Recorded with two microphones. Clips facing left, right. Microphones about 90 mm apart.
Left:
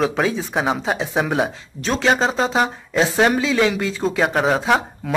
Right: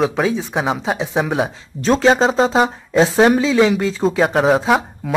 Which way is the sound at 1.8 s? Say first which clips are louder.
Right 7 dB; 35° right (ahead or behind).